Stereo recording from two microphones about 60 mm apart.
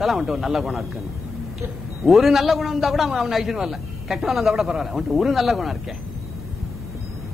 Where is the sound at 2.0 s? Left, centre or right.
Centre.